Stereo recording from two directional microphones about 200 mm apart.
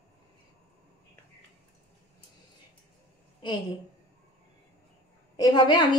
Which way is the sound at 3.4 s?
20° left (ahead or behind).